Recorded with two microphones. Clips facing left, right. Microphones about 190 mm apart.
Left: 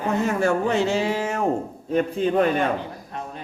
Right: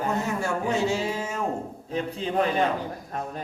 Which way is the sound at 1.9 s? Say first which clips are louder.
Left 8 dB; 55° left (ahead or behind).